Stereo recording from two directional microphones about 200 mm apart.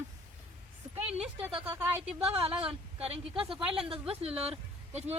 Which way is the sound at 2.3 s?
30° right (ahead or behind).